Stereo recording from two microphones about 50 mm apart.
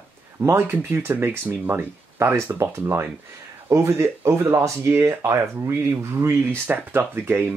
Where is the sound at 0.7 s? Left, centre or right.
Right.